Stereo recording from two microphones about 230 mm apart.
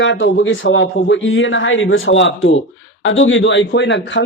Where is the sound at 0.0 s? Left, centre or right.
Left.